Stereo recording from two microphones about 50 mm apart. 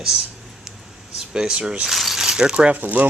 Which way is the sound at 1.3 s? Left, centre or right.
Centre.